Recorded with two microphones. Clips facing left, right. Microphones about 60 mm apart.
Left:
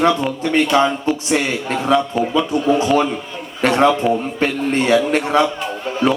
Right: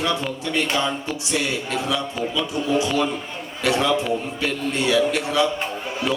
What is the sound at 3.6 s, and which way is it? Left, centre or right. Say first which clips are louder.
A man's voice: left 6 dB; left.